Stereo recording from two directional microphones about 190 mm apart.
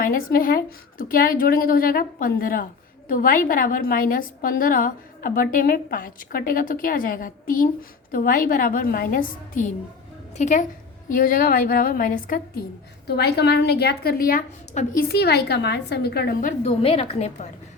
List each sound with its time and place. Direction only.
0.0 s a woman's voice: 50° left (ahead or behind)
13.1 s a woman's voice: 60° left (ahead or behind); by 15.0 s 45° left (ahead or behind)
15.0 s a woman's voice: 55° left (ahead or behind)
16.8 s a woman's voice: 30° left (ahead or behind)